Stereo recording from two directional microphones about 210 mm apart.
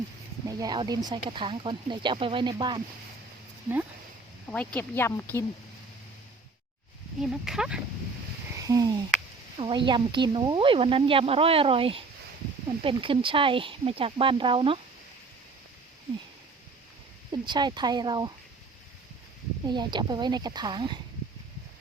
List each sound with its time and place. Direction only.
0.4 s speech: 20° right (ahead or behind)
4.5 s a woman's voice: 5° left (ahead or behind)
7.2 s speech: centre (ahead or behind)
8.6 s a sound: 15° right (ahead or behind)
9.6 s speech: 25° right (ahead or behind)
17.3 s speech: 20° right (ahead or behind)
19.6 s speech: 20° right (ahead or behind)